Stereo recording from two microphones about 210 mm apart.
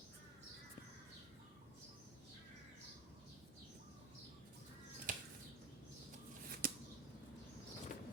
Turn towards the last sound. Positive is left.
turn(degrees=-40)  # may be behind; listen again after turning